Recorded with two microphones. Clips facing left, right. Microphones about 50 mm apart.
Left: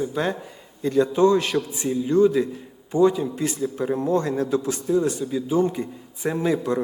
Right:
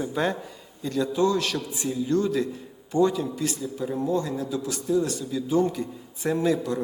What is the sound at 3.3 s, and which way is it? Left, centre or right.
Speech, left.